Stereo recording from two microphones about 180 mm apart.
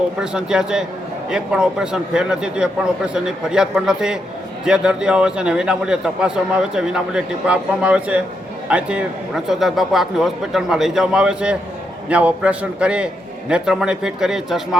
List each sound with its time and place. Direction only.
0.2 s a man's voice: 5° right (ahead or behind)